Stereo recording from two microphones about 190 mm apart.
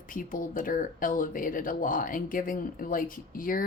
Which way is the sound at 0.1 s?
45° left (ahead or behind).